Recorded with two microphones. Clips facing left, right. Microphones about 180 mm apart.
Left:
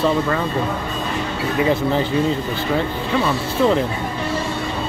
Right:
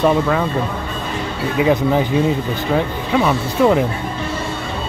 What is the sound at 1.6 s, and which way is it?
Speech, 15° right (ahead or behind).